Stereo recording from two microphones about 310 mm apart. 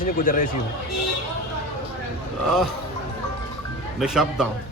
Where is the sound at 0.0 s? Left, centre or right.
Left.